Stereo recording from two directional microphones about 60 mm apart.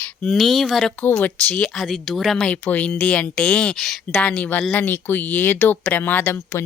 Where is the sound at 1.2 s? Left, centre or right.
Left.